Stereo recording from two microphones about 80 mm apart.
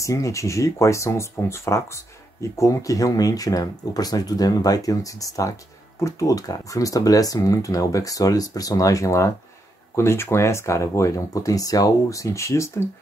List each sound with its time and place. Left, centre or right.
0.0 s speech: left